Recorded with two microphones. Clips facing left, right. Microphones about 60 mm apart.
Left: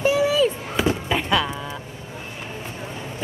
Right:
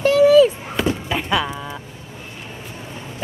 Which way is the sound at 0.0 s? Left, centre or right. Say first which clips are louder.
Right 7 dB; centre.